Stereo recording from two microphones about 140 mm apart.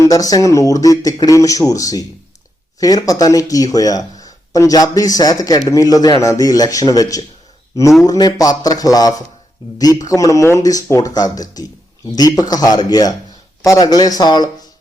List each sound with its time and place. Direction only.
0.0 s speech: 25° left (ahead or behind)